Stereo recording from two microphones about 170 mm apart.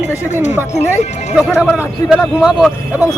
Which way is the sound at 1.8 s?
5° right (ahead or behind).